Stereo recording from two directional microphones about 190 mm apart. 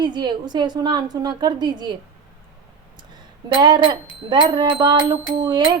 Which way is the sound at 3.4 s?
25° right (ahead or behind).